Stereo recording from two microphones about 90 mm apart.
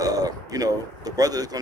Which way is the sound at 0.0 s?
45° right (ahead or behind).